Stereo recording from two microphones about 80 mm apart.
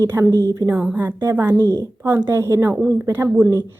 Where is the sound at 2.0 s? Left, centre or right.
Right.